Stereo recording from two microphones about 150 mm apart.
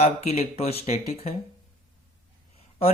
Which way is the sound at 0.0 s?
45° left (ahead or behind).